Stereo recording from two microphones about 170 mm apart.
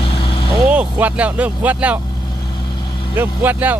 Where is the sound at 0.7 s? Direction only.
10° right (ahead or behind).